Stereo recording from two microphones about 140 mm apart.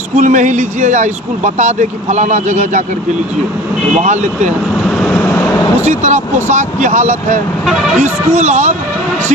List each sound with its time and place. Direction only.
0.2 s speech: 65° right (ahead or behind)
4.0 s speech: 55° right (ahead or behind)
4.9 s vehicle: 5° left (ahead or behind)
5.9 s speech: 60° right (ahead or behind)